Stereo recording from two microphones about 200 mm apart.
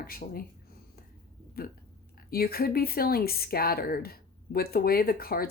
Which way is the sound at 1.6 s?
50° left (ahead or behind).